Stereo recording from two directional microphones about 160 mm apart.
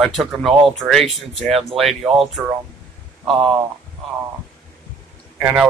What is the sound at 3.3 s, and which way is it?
Speech, 35° right (ahead or behind).